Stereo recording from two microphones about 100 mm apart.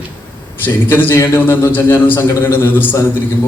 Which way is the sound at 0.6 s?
20° left (ahead or behind).